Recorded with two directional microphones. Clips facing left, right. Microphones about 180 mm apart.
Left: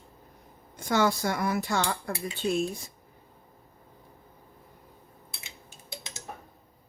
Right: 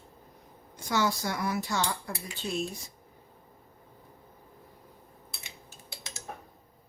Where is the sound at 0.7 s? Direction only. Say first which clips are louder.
Left 4 dB; 55° left (ahead or behind).